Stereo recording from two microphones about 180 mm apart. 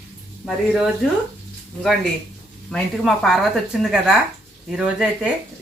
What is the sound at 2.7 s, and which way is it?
Speech, centre (ahead or behind).